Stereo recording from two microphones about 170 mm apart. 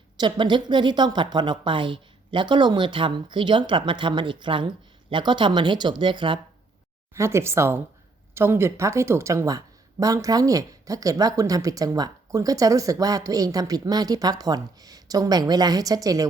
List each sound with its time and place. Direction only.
0.2 s speech: 25° right (ahead or behind)
7.1 s speech: 15° right (ahead or behind)